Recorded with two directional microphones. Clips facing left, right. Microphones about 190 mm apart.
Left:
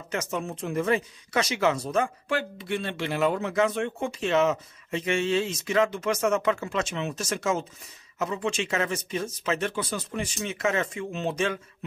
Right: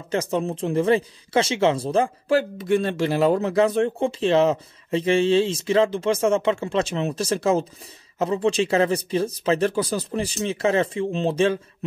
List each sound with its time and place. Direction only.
0.1 s speech: 30° right (ahead or behind)